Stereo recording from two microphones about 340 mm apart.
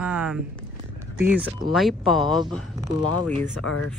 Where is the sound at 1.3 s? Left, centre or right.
Centre.